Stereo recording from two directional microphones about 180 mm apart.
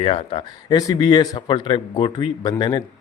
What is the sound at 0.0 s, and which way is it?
Speech, 30° left (ahead or behind).